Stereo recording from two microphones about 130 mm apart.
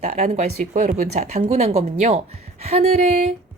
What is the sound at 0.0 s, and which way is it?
Speech, 60° right (ahead or behind).